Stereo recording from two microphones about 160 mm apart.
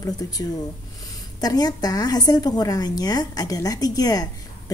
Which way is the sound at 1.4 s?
25° left (ahead or behind).